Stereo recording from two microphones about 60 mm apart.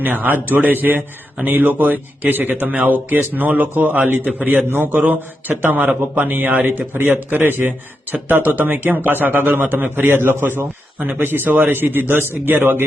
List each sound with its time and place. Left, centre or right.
0.0 s a man's voice: right
6.2 s a man's voice: right